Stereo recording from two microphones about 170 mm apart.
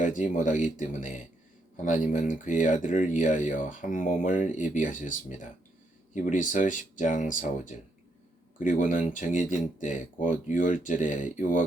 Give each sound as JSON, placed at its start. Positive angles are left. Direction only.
{"t": 0.0, "sound": "speech", "side_deg": 45}